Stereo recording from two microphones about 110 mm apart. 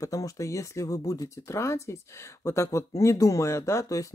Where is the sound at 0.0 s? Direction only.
30° left (ahead or behind).